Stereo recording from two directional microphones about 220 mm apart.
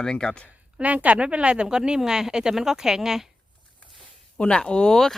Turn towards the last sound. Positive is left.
turn(degrees=0)  # may be behind; listen again after turning